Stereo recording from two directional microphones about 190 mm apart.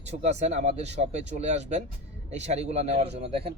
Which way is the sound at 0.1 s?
35° right (ahead or behind).